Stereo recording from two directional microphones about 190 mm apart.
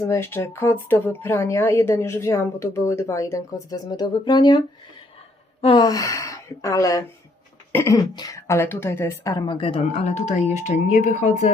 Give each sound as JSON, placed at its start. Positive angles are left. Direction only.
{"t": 0.0, "sound": "a woman's voice", "side_deg": 15}
{"t": 5.6, "sound": "a woman's voice", "side_deg": 20}